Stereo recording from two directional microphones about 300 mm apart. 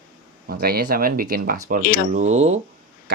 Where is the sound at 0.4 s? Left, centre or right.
Right.